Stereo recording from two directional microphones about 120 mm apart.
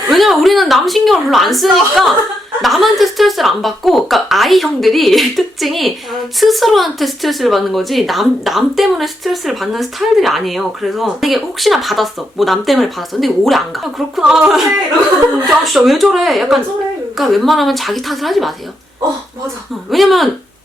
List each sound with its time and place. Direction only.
0.1 s speech: centre (ahead or behind)
19.9 s speech: centre (ahead or behind)